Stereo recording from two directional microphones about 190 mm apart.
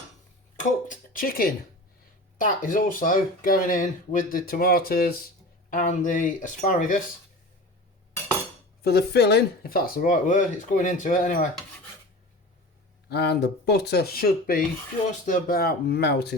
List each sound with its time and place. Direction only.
0.5 s speech: 45° left (ahead or behind)
8.8 s speech: 60° left (ahead or behind)
13.1 s speech: 60° left (ahead or behind)